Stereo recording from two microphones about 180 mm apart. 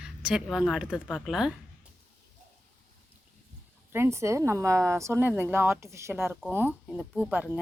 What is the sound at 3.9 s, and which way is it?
Speech, 15° right (ahead or behind).